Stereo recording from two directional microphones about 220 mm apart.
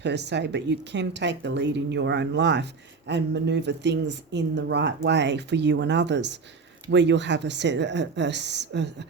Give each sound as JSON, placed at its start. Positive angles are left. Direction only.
{"t": 0.0, "sound": "a woman's voice", "side_deg": -50}